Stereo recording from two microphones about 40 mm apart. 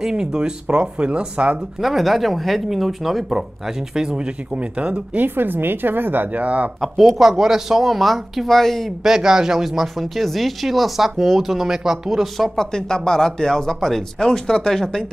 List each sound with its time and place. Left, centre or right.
0.0 s speech: centre
1.8 s speech: centre
4.6 s speech: right
5.1 s a woman's voice: right
6.3 s speech: right
6.8 s speech: centre
7.2 s speech: centre
9.0 s speech: centre
12.4 s speech: centre